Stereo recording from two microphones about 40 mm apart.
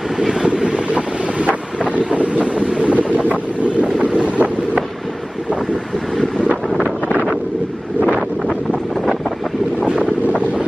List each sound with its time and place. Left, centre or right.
0.5 s wind noise: right
2.1 s wind noise: right
4.0 s vehicle: right